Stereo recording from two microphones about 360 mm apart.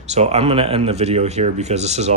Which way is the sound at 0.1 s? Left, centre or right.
Centre.